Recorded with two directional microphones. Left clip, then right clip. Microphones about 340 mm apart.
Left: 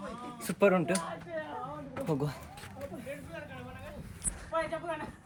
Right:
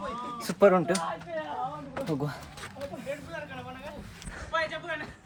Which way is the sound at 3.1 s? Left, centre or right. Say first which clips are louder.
Right 9 dB; centre.